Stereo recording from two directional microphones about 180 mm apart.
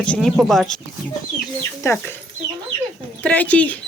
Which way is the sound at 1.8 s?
10° left (ahead or behind).